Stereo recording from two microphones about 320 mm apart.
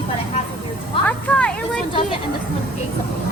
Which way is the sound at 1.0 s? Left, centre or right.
Centre.